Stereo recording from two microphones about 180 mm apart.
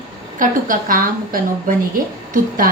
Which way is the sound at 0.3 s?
50° right (ahead or behind).